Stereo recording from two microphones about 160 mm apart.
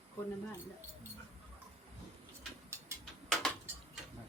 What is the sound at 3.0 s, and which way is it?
Tick-tock, 5° left (ahead or behind).